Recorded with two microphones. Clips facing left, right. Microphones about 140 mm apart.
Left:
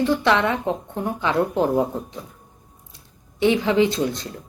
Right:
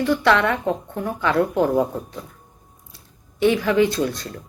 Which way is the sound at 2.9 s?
20° left (ahead or behind).